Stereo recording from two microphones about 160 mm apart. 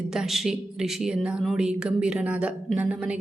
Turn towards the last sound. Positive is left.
turn(degrees=-10)  # may be behind; listen again after turning